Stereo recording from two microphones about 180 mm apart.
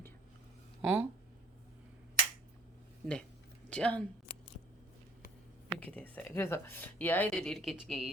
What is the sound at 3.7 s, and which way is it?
Speech, 5° left (ahead or behind).